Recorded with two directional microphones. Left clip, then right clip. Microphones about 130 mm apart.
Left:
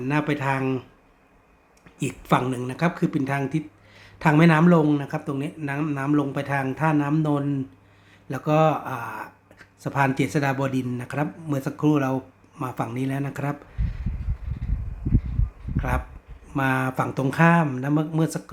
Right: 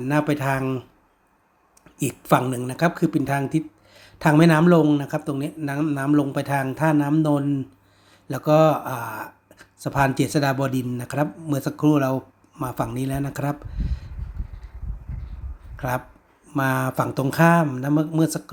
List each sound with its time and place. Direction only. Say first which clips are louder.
0.0 s speech: right 2 dB; 30° right (ahead or behind)
2.0 s speech: right 3 dB; 30° right (ahead or behind)
16.6 s speech: right 1 dB; 20° right (ahead or behind)